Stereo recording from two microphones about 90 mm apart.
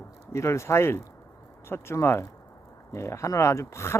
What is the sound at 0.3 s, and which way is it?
Speech, 30° left (ahead or behind).